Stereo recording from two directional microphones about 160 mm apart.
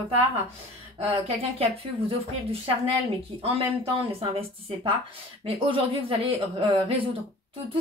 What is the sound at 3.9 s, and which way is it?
A woman's voice, 35° right (ahead or behind).